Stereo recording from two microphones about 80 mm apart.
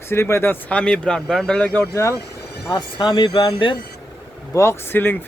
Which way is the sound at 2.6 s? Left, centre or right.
Left.